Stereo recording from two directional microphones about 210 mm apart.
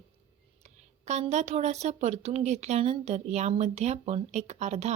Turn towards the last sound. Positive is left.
turn(degrees=-30)  # may be behind; listen again after turning